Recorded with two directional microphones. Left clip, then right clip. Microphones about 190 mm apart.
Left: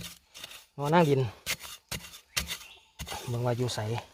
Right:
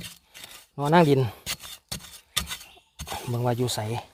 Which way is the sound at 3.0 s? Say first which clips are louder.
Right 4 dB; 40° right (ahead or behind).